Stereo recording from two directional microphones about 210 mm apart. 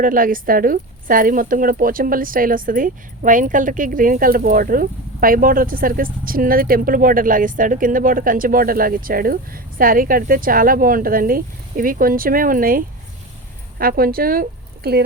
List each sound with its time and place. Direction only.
0.0 s speech: 40° right (ahead or behind)